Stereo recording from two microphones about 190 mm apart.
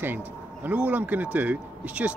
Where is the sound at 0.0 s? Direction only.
10° right (ahead or behind).